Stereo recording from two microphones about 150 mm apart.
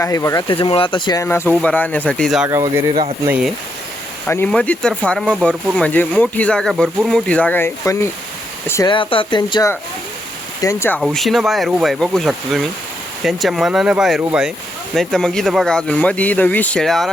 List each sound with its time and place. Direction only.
0.0 s speech: 20° left (ahead or behind)
0.4 s speech: 35° left (ahead or behind)
1.2 s speech: 15° left (ahead or behind)
2.5 s speech: 20° right (ahead or behind)
3.2 s speech: 10° right (ahead or behind)
4.3 s speech: 10° left (ahead or behind)
8.9 s speech: 35° left (ahead or behind)
10.6 s speech: 20° left (ahead or behind)
11.0 s speech: centre (ahead or behind)
14.9 s speech: 5° left (ahead or behind)